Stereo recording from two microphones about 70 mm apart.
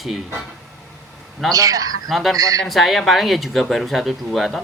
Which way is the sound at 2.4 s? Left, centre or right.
Right.